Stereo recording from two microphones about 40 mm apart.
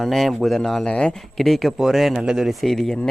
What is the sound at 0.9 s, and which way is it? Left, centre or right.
Speech, left.